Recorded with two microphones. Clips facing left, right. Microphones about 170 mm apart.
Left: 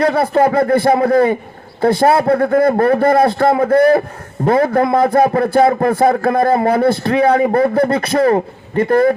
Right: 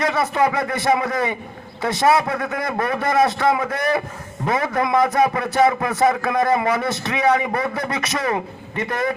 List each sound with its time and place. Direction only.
0.0 s a man's voice: 55° left (ahead or behind)